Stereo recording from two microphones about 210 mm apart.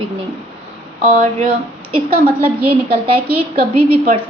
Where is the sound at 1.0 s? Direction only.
35° right (ahead or behind).